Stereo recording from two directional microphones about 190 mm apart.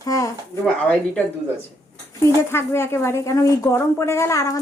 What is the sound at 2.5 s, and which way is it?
A woman's voice, 15° left (ahead or behind).